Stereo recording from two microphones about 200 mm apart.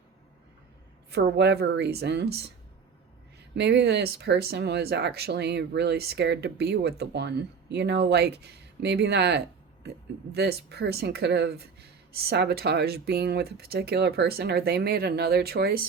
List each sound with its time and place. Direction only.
1.1 s speech: 55° right (ahead or behind)
3.5 s speech: 60° right (ahead or behind)